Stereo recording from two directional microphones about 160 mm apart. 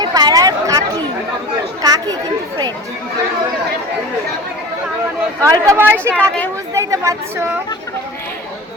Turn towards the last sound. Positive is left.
turn(degrees=-20)  # may be behind; listen again after turning